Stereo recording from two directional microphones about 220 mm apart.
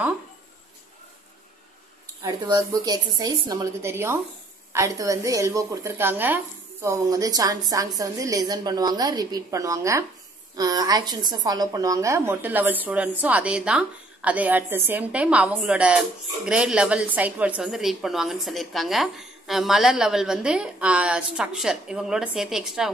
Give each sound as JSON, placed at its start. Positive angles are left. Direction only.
{"t": 2.2, "sound": "a woman's voice", "side_deg": -15}